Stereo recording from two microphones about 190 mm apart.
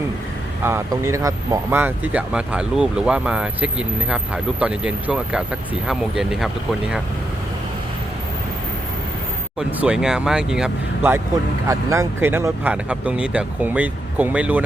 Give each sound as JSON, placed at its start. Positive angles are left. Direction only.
{"t": 0.6, "sound": "speech", "side_deg": -15}
{"t": 9.6, "sound": "speech", "side_deg": -5}